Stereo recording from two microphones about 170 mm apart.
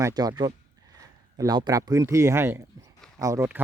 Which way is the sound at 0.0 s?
25° right (ahead or behind).